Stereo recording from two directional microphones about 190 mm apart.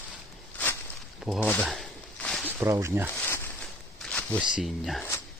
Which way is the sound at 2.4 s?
15° right (ahead or behind).